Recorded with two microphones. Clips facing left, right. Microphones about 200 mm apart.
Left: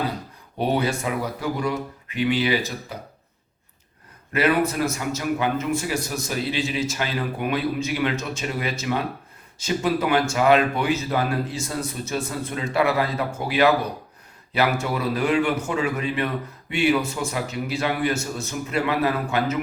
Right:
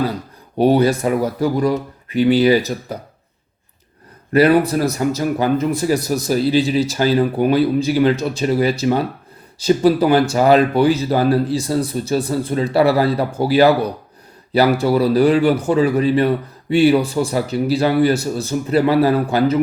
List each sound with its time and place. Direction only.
0.6 s a man's voice: 40° right (ahead or behind)
4.3 s a man's voice: 35° right (ahead or behind)